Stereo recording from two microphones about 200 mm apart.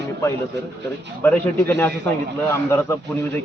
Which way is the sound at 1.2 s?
10° left (ahead or behind).